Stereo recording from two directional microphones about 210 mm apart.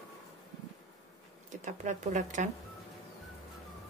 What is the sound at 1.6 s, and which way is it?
Speech, 35° right (ahead or behind).